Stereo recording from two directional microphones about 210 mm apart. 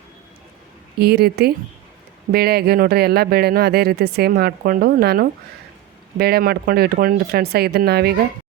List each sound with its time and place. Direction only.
0.9 s speech: 50° right (ahead or behind)